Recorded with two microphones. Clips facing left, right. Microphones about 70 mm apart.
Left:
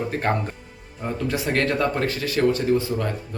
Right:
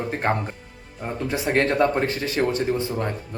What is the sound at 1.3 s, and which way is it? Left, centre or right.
Speech, right.